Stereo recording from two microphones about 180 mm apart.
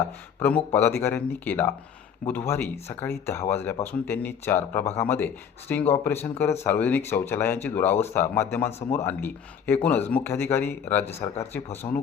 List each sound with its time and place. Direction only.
0.4 s speech: 10° left (ahead or behind)